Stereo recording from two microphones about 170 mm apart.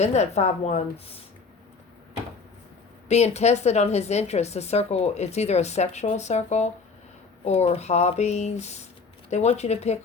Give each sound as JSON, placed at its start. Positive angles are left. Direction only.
{"t": 0.0, "sound": "a woman's voice", "side_deg": 40}
{"t": 3.1, "sound": "a woman's voice", "side_deg": 40}